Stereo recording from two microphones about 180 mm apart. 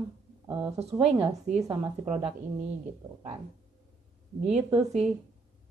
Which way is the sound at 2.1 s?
35° right (ahead or behind).